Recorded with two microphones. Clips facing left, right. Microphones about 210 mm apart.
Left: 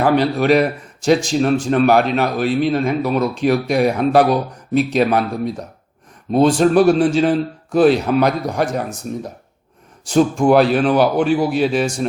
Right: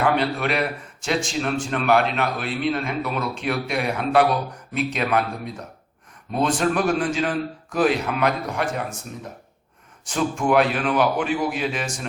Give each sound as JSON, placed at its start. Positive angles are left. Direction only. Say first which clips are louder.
{"t": 0.0, "sound": "a man's voice", "louder": "left 6 dB", "side_deg": 35}
{"t": 6.3, "sound": "a man's voice", "louder": "left 9 dB", "side_deg": 35}